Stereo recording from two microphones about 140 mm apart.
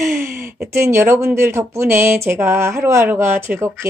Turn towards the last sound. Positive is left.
turn(degrees=-15)  # may be behind; listen again after turning